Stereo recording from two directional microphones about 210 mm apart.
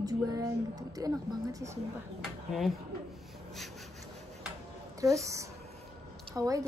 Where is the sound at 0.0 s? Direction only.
15° right (ahead or behind).